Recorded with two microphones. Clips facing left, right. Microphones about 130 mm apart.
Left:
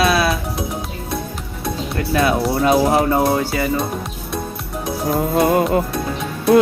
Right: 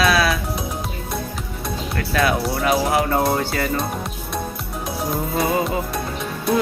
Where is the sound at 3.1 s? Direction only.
10° left (ahead or behind).